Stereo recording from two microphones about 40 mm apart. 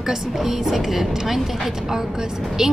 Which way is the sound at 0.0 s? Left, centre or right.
Centre.